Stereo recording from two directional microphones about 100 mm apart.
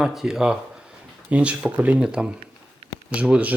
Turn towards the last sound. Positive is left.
turn(degrees=-15)  # may be behind; listen again after turning